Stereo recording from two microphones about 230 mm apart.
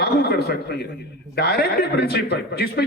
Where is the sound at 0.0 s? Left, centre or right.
Left.